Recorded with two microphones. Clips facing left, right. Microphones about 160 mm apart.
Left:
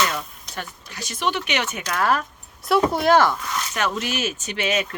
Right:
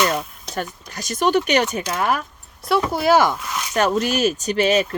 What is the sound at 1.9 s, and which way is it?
Speech, 20° right (ahead or behind).